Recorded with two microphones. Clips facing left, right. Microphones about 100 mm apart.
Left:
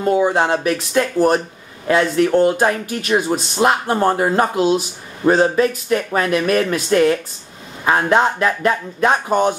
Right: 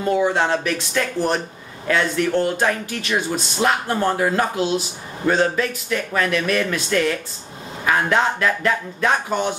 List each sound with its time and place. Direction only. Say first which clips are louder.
0.2 s speech: left 3 dB; 30° left (ahead or behind)
1.9 s speech: left 5 dB; 35° left (ahead or behind)
9.3 s speech: left 6 dB; 45° left (ahead or behind)